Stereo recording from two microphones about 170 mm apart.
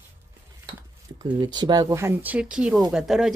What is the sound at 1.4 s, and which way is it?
Speech, 25° right (ahead or behind).